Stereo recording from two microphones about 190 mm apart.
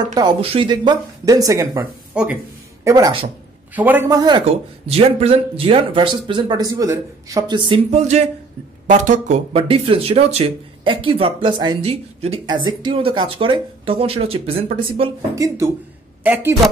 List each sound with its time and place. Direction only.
0.1 s speech: 20° right (ahead or behind)
2.1 s speech: 5° right (ahead or behind)
2.8 s a woman's voice: 15° right (ahead or behind)
15.3 s speech: 15° right (ahead or behind)